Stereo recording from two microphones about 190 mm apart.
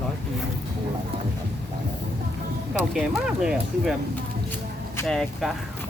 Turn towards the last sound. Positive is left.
turn(degrees=0)  # may be behind; listen again after turning